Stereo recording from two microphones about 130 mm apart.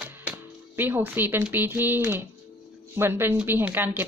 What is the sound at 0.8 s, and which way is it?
A woman's voice, 15° right (ahead or behind).